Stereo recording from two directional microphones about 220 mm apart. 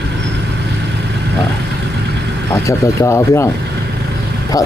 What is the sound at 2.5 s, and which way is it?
Speech, 15° left (ahead or behind).